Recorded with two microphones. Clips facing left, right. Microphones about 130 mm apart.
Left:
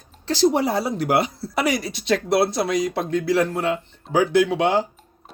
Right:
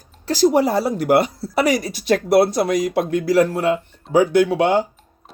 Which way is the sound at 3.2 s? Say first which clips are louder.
Right 5 dB; 50° right (ahead or behind).